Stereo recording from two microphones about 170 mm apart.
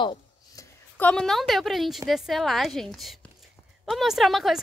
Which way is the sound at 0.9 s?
5° left (ahead or behind).